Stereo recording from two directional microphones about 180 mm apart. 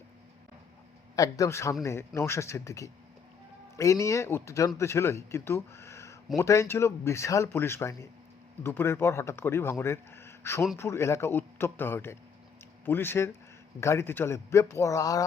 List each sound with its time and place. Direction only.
1.1 s speech: 20° left (ahead or behind)